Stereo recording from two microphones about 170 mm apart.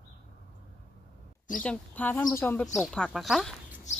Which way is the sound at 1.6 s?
10° left (ahead or behind).